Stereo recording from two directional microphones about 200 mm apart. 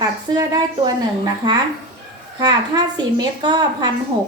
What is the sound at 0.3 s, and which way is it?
A woman's voice, 20° right (ahead or behind).